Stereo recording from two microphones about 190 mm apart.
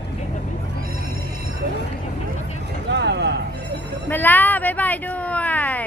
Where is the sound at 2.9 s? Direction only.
65° right (ahead or behind).